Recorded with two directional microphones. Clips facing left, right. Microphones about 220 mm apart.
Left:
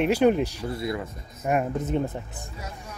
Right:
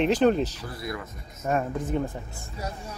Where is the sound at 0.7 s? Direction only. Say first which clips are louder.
Left 5 dB; 25° left (ahead or behind).